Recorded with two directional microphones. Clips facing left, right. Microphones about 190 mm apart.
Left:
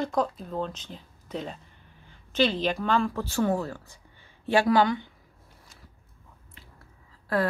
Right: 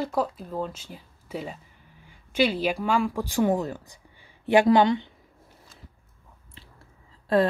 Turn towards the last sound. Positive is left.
turn(degrees=-25)  # may be behind; listen again after turning